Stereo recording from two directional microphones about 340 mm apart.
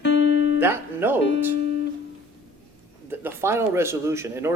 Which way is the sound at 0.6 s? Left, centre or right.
Centre.